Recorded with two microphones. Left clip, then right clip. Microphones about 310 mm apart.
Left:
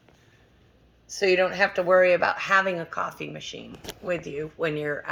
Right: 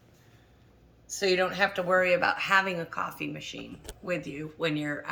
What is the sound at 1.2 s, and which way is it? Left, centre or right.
Speech, left.